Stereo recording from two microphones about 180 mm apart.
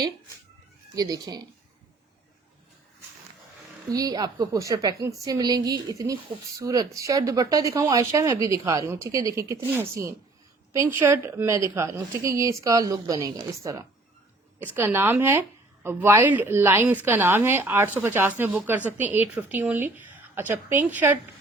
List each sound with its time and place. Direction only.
0.9 s a woman's voice: 20° right (ahead or behind)
3.9 s a woman's voice: 20° right (ahead or behind)